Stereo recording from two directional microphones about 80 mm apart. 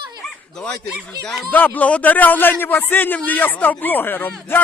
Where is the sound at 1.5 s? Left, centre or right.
Left.